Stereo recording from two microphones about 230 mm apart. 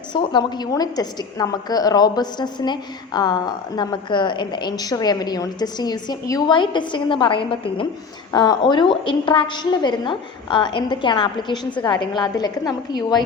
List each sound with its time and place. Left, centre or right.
0.1 s a woman's voice: centre